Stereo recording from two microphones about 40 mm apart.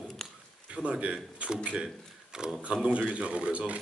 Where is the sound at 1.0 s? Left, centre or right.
Right.